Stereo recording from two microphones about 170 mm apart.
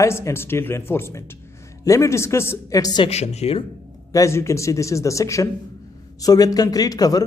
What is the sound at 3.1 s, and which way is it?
Speech, 40° left (ahead or behind).